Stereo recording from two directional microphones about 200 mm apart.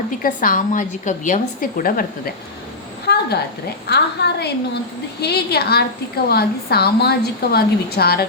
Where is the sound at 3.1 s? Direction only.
55° left (ahead or behind).